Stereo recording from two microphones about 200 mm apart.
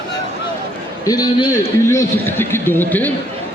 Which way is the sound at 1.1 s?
20° left (ahead or behind).